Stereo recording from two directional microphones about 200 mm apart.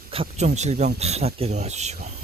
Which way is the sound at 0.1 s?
30° right (ahead or behind).